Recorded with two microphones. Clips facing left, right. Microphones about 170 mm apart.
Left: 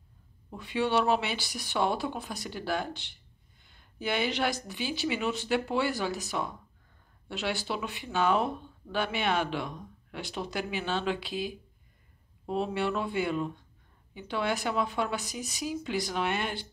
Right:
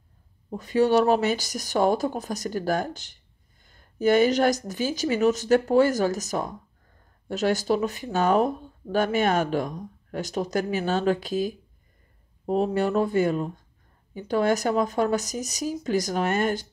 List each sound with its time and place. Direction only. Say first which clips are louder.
0.5 s speech: right 8 dB; 40° right (ahead or behind)